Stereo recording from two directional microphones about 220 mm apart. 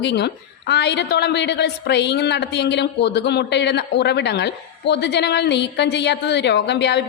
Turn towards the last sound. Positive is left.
turn(degrees=50)  # may be behind; listen again after turning